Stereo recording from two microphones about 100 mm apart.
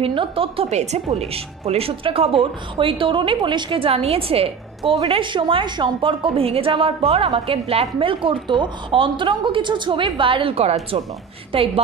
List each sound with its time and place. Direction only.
0.0 s a woman's voice: 65° right (ahead or behind)
5.0 s a woman's voice: 60° right (ahead or behind); by 11.0 s 85° right
11.5 s a woman's voice: 65° right (ahead or behind)